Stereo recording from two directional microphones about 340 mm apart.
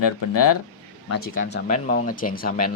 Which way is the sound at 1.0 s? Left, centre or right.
Left.